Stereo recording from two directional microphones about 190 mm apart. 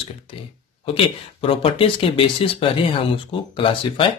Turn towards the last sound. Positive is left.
turn(degrees=25)  # may be behind; listen again after turning